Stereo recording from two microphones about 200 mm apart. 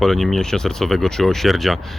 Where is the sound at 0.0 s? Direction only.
Centre (ahead or behind).